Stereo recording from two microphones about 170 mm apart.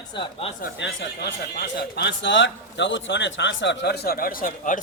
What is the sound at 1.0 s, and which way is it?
A man's voice, 75° left (ahead or behind).